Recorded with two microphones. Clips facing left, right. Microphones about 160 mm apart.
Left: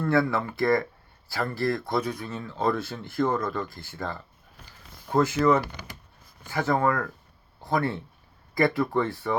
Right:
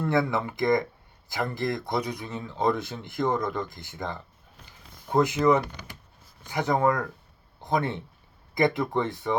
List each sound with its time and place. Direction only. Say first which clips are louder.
0.0 s speech: left 1 dB; 20° right (ahead or behind)